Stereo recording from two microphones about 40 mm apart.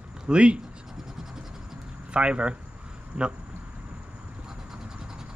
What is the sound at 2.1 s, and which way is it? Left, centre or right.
Speech, right.